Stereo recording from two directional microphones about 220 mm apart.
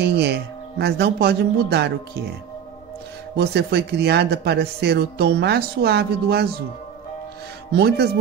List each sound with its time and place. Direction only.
0.0 s speech: 50° right (ahead or behind)
3.3 s speech: 50° right (ahead or behind)
7.7 s speech: 45° right (ahead or behind)